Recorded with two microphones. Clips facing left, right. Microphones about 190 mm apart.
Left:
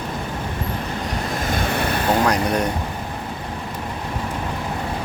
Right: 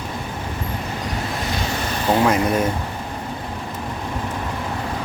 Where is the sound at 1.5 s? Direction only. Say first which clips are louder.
Left 3 dB; 55° left (ahead or behind).